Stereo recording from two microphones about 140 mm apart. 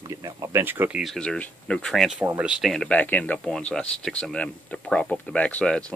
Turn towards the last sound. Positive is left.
turn(degrees=5)  # may be behind; listen again after turning